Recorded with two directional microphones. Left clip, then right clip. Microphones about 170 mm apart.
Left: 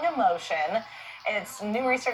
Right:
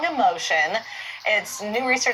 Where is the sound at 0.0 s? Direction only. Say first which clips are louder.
Right 4 dB; 15° right (ahead or behind).